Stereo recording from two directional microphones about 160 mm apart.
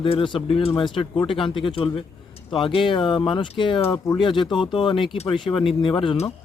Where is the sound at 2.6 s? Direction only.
30° left (ahead or behind).